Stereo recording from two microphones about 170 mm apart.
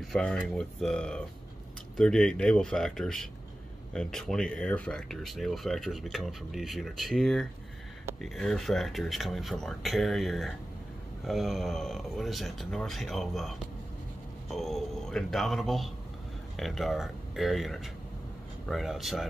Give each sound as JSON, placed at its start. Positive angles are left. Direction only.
{"t": 0.0, "sound": "speech", "side_deg": 5}